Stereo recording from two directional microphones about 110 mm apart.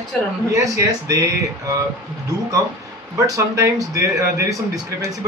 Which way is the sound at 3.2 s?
30° right (ahead or behind).